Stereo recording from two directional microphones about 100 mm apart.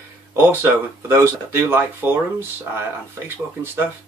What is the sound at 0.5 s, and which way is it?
Speech, 25° right (ahead or behind).